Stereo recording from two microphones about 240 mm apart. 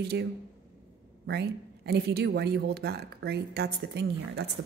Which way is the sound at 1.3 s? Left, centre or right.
Right.